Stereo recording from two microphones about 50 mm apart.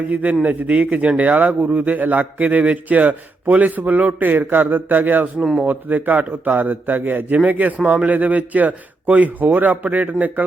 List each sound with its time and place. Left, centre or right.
0.1 s a man's voice: right